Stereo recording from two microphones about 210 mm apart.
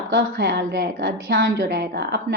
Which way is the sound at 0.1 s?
55° right (ahead or behind).